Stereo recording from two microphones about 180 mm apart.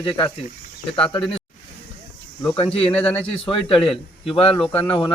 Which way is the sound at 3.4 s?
30° left (ahead or behind).